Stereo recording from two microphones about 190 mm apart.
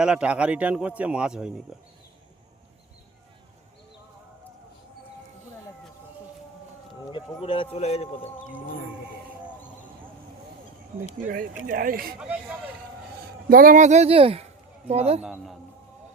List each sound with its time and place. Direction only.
0.0 s a man's voice: 5° right (ahead or behind)
7.1 s speech: 25° left (ahead or behind)
11.3 s speech: 45° right (ahead or behind)
12.2 s speech: 5° right (ahead or behind)
13.5 s speech: 50° right (ahead or behind)
15.2 s a man's voice: 5° right (ahead or behind)